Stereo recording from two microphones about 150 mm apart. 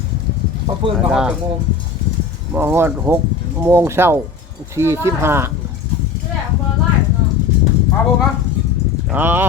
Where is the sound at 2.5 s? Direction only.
15° right (ahead or behind).